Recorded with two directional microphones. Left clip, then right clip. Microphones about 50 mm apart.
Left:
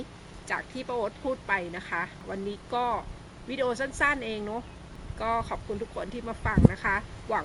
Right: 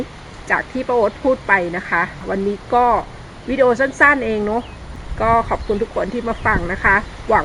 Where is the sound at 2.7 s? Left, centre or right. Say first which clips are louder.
Right 14 dB; left.